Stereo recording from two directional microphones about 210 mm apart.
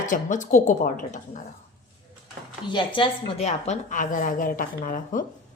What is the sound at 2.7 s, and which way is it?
A woman's voice, 25° left (ahead or behind).